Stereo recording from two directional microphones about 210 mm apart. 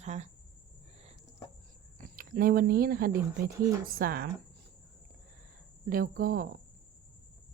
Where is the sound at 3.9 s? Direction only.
45° right (ahead or behind).